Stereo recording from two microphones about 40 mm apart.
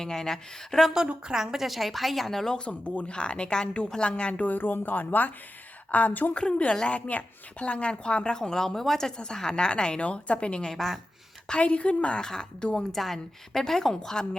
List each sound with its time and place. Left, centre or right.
0.0 s a woman's voice: centre
1.3 s a woman's voice: centre
2.5 s a woman's voice: left
4.4 s speech: left
6.3 s a woman's voice: left
8.4 s a woman's voice: centre; by 12.2 s left
12.2 s a woman's voice: centre